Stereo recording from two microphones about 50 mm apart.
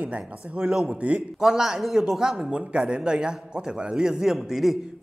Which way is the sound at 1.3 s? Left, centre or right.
Centre.